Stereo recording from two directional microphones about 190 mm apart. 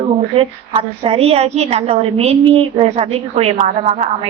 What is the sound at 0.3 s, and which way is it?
A woman's voice, 30° right (ahead or behind).